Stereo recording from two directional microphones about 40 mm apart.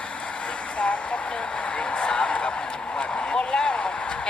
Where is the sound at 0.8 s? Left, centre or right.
Left.